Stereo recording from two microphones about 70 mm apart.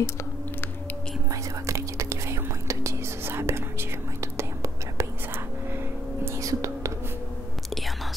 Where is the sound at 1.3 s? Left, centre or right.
Right.